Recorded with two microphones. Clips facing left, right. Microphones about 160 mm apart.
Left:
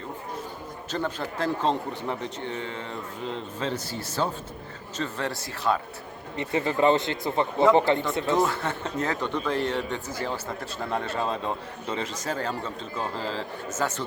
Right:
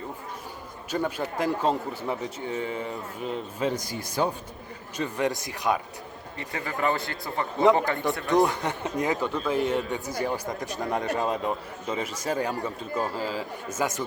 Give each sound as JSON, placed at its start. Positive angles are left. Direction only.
{"t": 0.9, "sound": "speech", "side_deg": -10}
{"t": 6.3, "sound": "speech", "side_deg": 20}
{"t": 8.3, "sound": "speech", "side_deg": -15}